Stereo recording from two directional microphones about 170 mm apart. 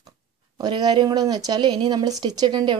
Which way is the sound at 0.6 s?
25° right (ahead or behind).